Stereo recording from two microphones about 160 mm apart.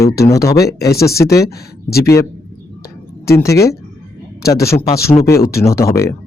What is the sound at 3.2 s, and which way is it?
Speech, 20° left (ahead or behind).